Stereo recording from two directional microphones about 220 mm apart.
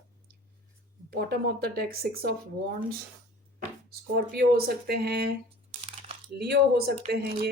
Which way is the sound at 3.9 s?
45° right (ahead or behind).